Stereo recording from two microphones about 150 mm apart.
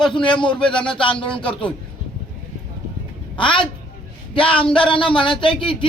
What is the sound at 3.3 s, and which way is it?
Speech, 35° left (ahead or behind).